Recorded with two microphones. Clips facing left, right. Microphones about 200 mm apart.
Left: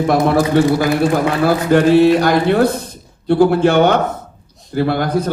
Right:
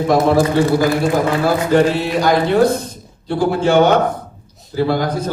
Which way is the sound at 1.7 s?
60° left (ahead or behind).